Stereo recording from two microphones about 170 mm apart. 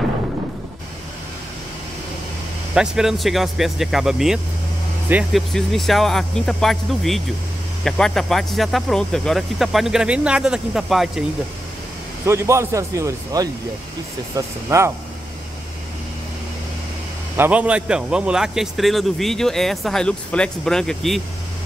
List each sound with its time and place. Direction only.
2.7 s speech: 5° right (ahead or behind)
12.3 s speech: 15° right (ahead or behind)
17.4 s speech: 10° right (ahead or behind)